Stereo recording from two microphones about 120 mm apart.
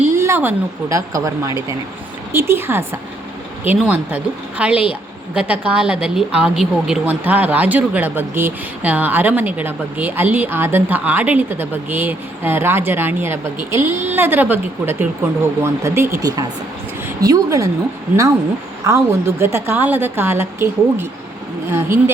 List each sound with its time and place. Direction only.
0.1 s a woman's voice: 25° right (ahead or behind)
18.9 s a woman's voice: 20° right (ahead or behind)